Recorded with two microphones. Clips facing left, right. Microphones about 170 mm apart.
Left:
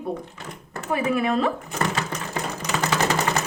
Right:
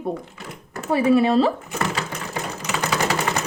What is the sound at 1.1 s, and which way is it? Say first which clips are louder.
Speech: right 6 dB; 30° right (ahead or behind).